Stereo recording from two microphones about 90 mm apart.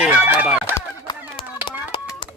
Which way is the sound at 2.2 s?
75° left (ahead or behind).